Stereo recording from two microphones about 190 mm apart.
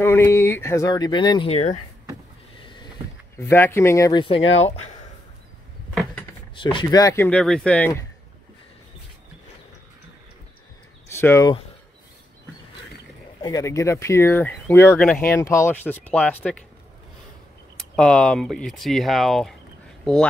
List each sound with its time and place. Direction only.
0.0 s speech: 15° left (ahead or behind); by 1.8 s 35° left (ahead or behind)
2.6 s vehicle: 25° left (ahead or behind)
3.3 s speech: 10° left (ahead or behind)
6.5 s speech: 25° left (ahead or behind)
7.2 s speech: 5° left (ahead or behind)
11.1 s speech: 15° left (ahead or behind)
13.4 s speech: 20° left (ahead or behind)
17.9 s speech: 5° left (ahead or behind)